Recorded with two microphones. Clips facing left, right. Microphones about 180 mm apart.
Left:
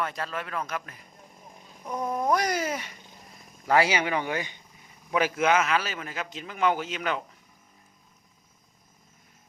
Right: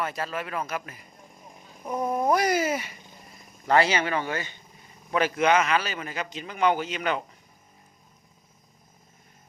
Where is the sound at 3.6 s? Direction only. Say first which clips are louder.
Right 1 dB; 10° left (ahead or behind).